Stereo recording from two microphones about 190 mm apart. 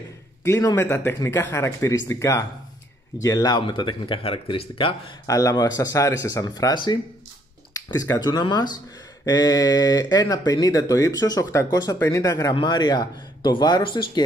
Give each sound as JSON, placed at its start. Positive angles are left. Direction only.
{"t": 0.4, "sound": "speech", "side_deg": 15}
{"t": 5.2, "sound": "speech", "side_deg": 15}